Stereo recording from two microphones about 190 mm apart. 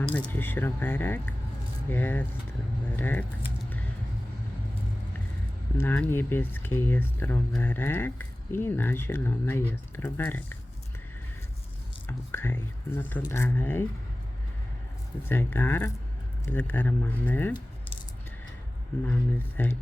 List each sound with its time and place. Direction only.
0.1 s speech: 10° left (ahead or behind)
5.7 s speech: 10° left (ahead or behind)
12.0 s speech: 10° left (ahead or behind)
15.3 s speech: 10° left (ahead or behind)
19.0 s speech: 10° left (ahead or behind)